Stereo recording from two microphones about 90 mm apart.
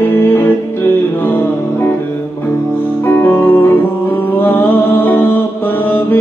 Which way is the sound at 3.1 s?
25° left (ahead or behind).